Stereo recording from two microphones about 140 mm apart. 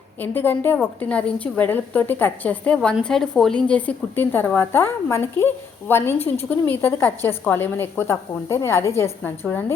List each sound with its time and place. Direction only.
0.2 s a woman's voice: 15° left (ahead or behind)